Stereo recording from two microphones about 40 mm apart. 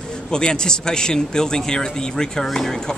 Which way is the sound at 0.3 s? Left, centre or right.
Left.